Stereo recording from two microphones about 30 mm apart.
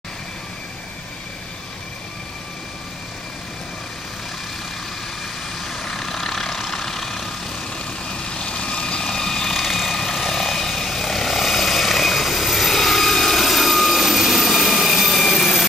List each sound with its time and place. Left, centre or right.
5.6 s vehicle: centre
7.7 s vehicle: left
9.1 s vehicle: centre
9.5 s vehicle: centre